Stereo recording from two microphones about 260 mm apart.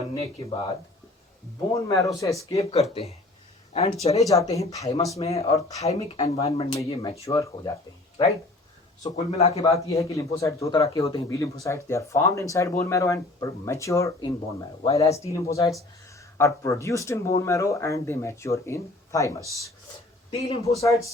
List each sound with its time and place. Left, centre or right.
0.1 s speech: centre
2.1 s a man's voice: centre
4.2 s speech: centre
9.0 s speech: left
9.8 s speech: centre
20.3 s speech: left
20.7 s speech: centre